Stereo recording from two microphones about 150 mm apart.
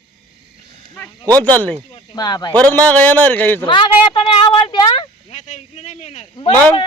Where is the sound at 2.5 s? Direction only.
10° left (ahead or behind).